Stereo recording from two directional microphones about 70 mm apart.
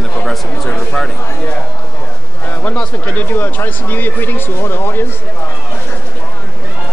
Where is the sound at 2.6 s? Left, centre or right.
Left.